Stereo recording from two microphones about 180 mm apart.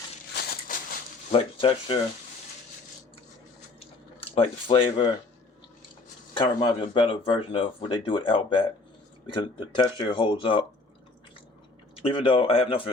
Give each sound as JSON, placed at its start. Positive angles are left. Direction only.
{"t": 1.3, "sound": "speech", "side_deg": 30}
{"t": 3.8, "sound": "a sound", "side_deg": 35}
{"t": 6.3, "sound": "speech", "side_deg": 30}
{"t": 12.0, "sound": "speech", "side_deg": 30}